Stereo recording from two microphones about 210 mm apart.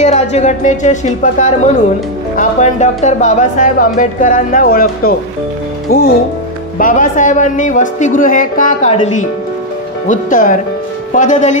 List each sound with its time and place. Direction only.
0.0 s speech: 35° left (ahead or behind)
6.8 s speech: 40° left (ahead or behind)